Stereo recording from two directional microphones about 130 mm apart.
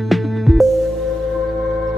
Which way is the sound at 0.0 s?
Centre (ahead or behind).